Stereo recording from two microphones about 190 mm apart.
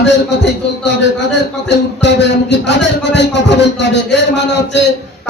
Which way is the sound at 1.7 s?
65° left (ahead or behind).